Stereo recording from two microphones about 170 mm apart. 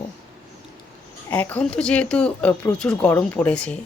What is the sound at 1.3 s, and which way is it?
A woman's voice, 10° left (ahead or behind).